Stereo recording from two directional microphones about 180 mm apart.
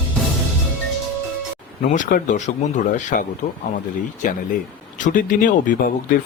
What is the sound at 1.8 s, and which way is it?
Speech, 45° left (ahead or behind).